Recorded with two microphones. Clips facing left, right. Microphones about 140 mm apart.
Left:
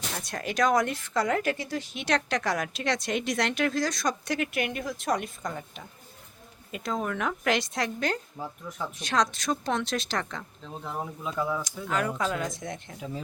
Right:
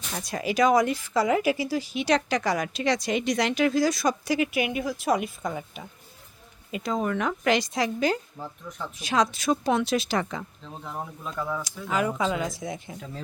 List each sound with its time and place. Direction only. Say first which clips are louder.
0.2 s a woman's voice: right 4 dB; centre (ahead or behind)
11.2 s a woman's voice: left 2 dB; 5° left (ahead or behind)